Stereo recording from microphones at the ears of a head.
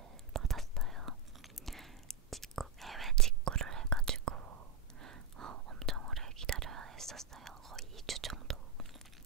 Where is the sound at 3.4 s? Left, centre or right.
Right.